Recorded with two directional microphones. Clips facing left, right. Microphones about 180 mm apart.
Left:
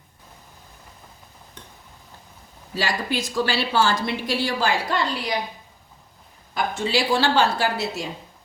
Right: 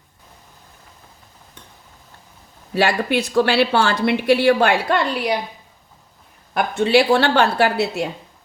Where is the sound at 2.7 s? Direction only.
60° right (ahead or behind).